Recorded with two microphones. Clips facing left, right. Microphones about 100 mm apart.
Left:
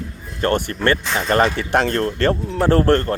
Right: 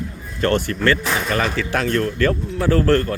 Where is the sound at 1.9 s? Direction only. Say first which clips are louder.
Even; 35° left (ahead or behind).